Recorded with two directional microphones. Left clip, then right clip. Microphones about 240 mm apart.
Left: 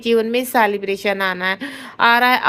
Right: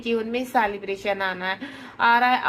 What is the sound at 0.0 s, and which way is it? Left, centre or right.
A woman's voice, left.